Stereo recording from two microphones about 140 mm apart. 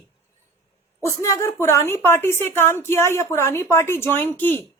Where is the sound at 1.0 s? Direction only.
20° left (ahead or behind).